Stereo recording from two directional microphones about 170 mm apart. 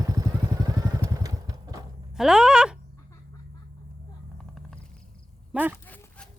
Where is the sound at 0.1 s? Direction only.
20° right (ahead or behind).